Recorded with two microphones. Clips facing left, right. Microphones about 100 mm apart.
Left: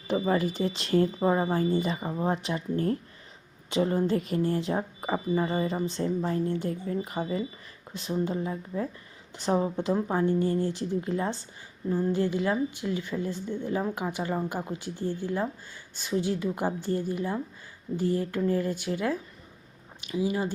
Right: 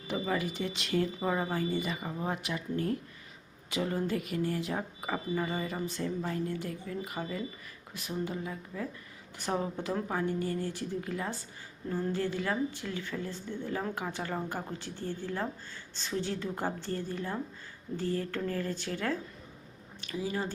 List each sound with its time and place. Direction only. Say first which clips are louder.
0.1 s speech: left 6 dB; 35° left (ahead or behind); by 20.5 s 15° left (ahead or behind)